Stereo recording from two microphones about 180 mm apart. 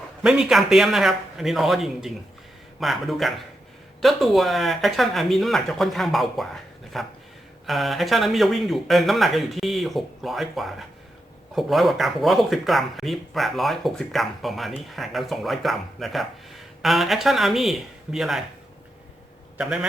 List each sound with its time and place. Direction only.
0.2 s speech: 5° right (ahead or behind)